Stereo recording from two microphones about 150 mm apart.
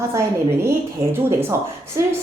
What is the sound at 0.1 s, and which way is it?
A woman's voice, 20° right (ahead or behind).